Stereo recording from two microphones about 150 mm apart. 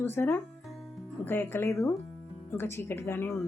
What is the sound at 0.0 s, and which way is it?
A woman's voice, 15° left (ahead or behind).